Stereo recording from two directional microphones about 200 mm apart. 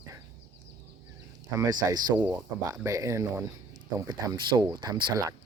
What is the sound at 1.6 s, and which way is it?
Speech, 20° right (ahead or behind).